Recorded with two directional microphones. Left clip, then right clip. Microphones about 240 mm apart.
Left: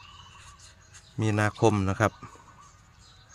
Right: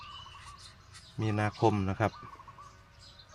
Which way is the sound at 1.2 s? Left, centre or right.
Left.